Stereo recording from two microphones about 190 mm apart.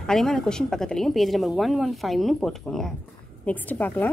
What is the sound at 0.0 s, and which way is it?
A woman's voice, 5° left (ahead or behind).